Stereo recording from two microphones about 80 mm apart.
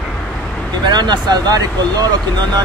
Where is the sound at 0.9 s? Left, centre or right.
Right.